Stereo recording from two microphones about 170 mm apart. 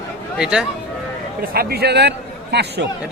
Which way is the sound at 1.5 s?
70° right (ahead or behind).